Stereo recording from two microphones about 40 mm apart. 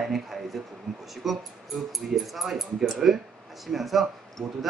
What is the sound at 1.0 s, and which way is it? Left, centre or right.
Speech, centre.